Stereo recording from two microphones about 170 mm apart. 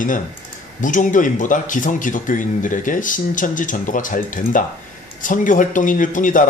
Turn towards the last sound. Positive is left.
turn(degrees=50)  # may be behind; listen again after turning